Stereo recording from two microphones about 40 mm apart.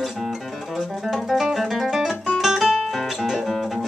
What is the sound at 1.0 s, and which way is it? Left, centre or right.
Music, centre.